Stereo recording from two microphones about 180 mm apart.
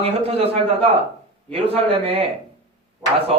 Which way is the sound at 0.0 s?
35° right (ahead or behind).